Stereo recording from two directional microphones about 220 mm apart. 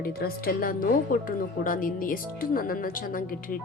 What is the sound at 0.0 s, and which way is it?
Speech, 45° left (ahead or behind).